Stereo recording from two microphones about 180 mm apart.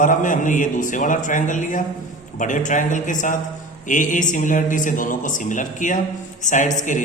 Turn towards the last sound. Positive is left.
turn(degrees=45)  # may be behind; listen again after turning